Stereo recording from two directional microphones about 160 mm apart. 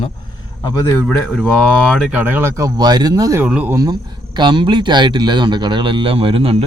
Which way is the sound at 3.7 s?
25° right (ahead or behind).